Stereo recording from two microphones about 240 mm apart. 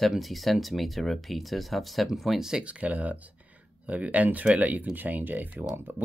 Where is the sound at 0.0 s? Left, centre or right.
Centre.